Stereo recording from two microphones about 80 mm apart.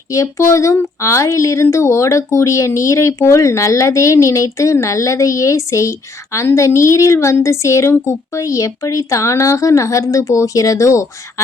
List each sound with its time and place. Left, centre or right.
0.1 s a woman's voice: left